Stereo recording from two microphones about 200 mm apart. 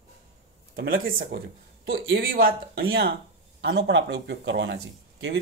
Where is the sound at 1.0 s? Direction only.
45° right (ahead or behind).